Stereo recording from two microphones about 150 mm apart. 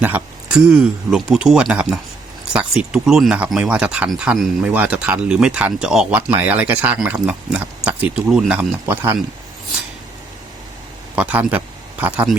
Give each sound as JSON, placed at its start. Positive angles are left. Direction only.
{"t": 0.0, "sound": "speech", "side_deg": -10}
{"t": 8.9, "sound": "speech", "side_deg": -15}
{"t": 11.1, "sound": "speech", "side_deg": -10}